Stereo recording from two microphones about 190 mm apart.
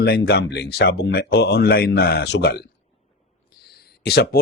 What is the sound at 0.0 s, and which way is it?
Speech, 60° left (ahead or behind).